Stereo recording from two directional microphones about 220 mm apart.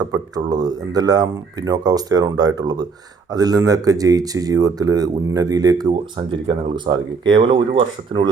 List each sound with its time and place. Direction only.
0.0 s speech: 15° right (ahead or behind)